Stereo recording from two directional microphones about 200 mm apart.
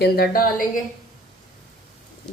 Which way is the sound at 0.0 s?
50° left (ahead or behind).